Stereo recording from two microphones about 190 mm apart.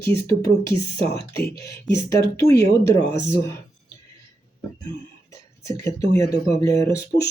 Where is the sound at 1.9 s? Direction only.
15° left (ahead or behind).